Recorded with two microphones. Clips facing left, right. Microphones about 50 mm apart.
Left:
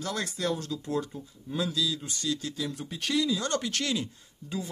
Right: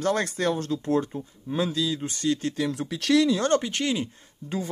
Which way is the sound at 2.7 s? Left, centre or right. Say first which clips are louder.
Right 10 dB; right.